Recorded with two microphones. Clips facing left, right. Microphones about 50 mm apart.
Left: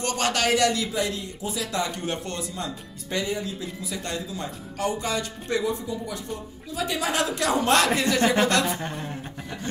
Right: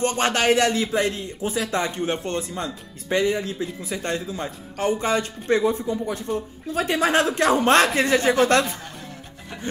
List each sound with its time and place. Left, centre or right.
0.0 s speech: right
8.6 s a woman's voice: left